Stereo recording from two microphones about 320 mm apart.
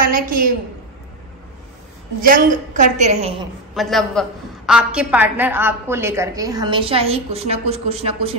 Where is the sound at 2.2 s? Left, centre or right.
Right.